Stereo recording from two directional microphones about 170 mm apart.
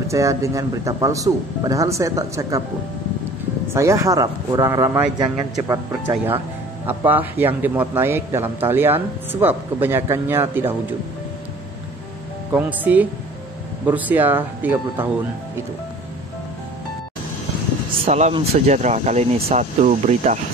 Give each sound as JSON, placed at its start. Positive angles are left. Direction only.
{"t": 0.1, "sound": "speech", "side_deg": -20}
{"t": 3.7, "sound": "speech", "side_deg": -15}
{"t": 6.9, "sound": "a man's voice", "side_deg": -10}
{"t": 12.5, "sound": "a man's voice", "side_deg": -10}
{"t": 18.0, "sound": "speech", "side_deg": -40}